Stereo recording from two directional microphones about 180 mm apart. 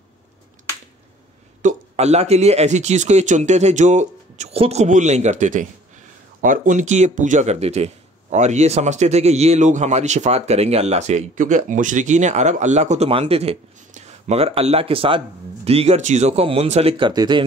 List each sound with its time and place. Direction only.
1.6 s speech: 40° right (ahead or behind); by 17.5 s 25° right (ahead or behind)